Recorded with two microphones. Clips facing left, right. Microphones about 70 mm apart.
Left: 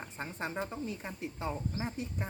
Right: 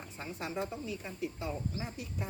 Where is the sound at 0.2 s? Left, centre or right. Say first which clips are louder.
Even; left.